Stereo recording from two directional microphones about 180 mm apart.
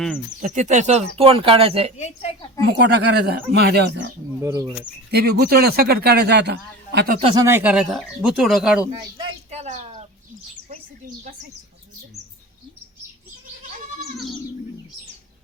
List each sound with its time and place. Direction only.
0.4 s speech: 40° right (ahead or behind)
2.0 s a child's voice: 40° left (ahead or behind)
2.8 s speech: 70° right (ahead or behind)
4.4 s speech: 15° right (ahead or behind)
5.1 s a man's voice: 60° right (ahead or behind)
7.3 s speech: 15° right (ahead or behind)
9.5 s bird: 40° right (ahead or behind)